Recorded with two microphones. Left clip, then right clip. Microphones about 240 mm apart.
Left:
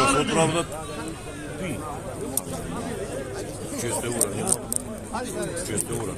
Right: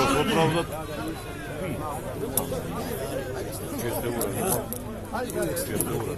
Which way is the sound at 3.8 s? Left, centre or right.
Left.